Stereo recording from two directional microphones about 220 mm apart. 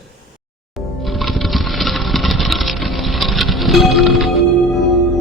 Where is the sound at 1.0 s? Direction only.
Centre (ahead or behind).